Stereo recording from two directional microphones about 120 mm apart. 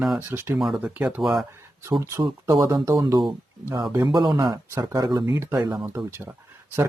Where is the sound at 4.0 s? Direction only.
35° right (ahead or behind); by 6.3 s 20° right (ahead or behind).